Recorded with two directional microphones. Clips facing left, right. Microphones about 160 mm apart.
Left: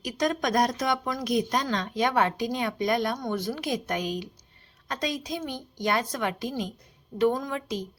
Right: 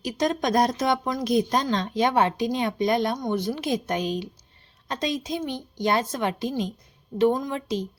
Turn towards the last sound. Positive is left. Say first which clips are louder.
# right 3 dB
turn(degrees=-25)  # may be behind; listen again after turning